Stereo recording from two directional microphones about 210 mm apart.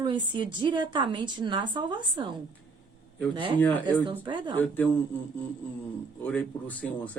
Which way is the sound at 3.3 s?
25° right (ahead or behind).